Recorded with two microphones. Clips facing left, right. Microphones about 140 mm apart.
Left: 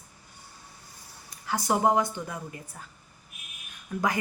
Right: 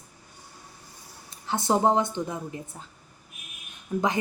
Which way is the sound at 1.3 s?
25° right (ahead or behind).